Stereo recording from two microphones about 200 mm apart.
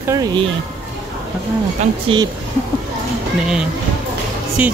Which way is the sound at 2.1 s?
25° right (ahead or behind).